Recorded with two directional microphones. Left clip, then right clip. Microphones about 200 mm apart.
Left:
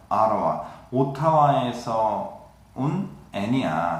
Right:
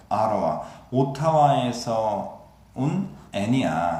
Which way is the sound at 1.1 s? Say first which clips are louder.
Even; 40° right (ahead or behind).